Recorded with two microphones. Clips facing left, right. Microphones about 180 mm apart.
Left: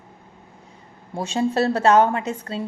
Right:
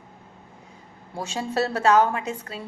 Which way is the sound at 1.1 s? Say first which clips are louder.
Left 5 dB; 25° left (ahead or behind).